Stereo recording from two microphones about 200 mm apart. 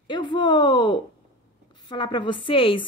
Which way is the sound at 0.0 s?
25° left (ahead or behind).